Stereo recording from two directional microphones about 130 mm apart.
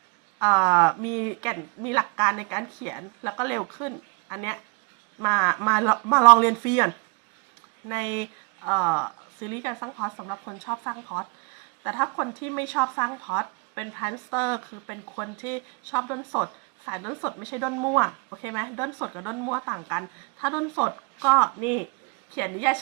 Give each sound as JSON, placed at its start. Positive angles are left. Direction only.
{"t": 0.3, "sound": "speech", "side_deg": 15}
{"t": 6.4, "sound": "speech", "side_deg": 20}